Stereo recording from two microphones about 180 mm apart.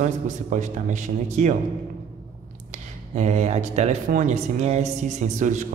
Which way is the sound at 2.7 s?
40° right (ahead or behind).